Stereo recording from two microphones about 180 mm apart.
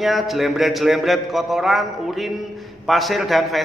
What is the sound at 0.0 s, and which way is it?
A man's voice, centre (ahead or behind).